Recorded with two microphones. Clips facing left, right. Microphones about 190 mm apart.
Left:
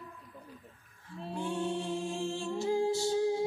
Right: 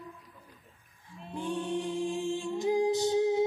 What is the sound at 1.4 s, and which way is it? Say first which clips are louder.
A capella: right 2 dB; 15° right (ahead or behind).